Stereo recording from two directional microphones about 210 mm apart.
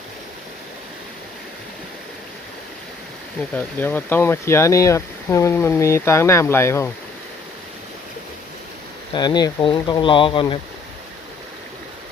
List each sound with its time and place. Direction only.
3.5 s speech: 10° left (ahead or behind)
9.1 s speech: 20° left (ahead or behind)